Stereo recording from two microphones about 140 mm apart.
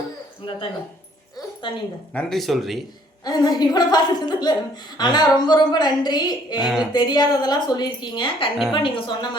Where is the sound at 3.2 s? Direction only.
30° left (ahead or behind).